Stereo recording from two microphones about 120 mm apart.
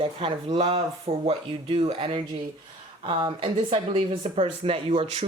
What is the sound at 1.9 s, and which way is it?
Speech, 45° right (ahead or behind).